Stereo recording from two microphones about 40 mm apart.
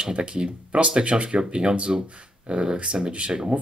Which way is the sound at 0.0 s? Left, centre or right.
Right.